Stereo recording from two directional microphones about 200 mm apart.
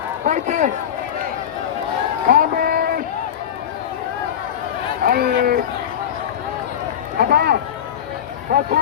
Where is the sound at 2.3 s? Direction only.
45° right (ahead or behind).